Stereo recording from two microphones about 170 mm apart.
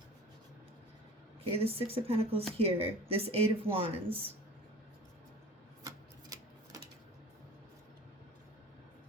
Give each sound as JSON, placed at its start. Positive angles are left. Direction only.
{"t": 1.5, "sound": "speech", "side_deg": -35}